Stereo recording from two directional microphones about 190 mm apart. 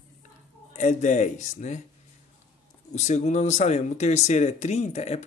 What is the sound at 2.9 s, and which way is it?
Speech, 40° left (ahead or behind).